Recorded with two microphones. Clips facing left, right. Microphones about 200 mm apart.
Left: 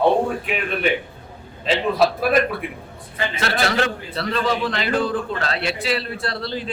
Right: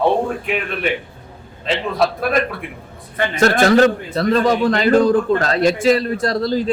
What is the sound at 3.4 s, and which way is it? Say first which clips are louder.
A man's voice: right 10 dB; 45° right (ahead or behind).